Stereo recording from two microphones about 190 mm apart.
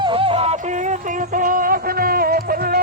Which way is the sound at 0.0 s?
30° right (ahead or behind).